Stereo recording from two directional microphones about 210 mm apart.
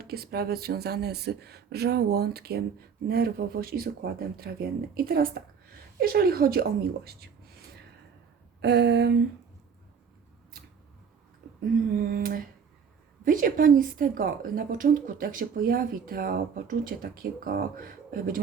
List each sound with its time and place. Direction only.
0.0 s a woman's voice: 45° right (ahead or behind)
8.6 s a woman's voice: 55° right (ahead or behind)
12.1 s a sound: 40° right (ahead or behind)
13.2 s a woman's voice: 40° right (ahead or behind)